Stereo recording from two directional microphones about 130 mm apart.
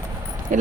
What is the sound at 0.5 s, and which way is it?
Speech, 80° right.